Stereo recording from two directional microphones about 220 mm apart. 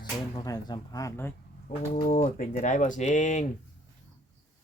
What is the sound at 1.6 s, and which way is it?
Speech, 40° left (ahead or behind).